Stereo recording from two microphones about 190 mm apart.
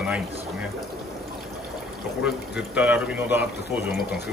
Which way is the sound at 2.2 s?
5° right (ahead or behind).